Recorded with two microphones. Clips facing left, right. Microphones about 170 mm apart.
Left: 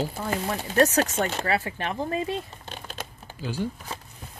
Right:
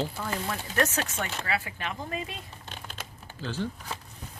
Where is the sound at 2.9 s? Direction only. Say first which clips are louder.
Left 5 dB; 10° left (ahead or behind).